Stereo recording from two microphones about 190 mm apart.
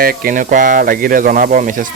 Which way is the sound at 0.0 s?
50° right (ahead or behind).